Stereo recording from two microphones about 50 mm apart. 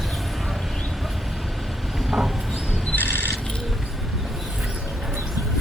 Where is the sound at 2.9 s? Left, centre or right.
Left.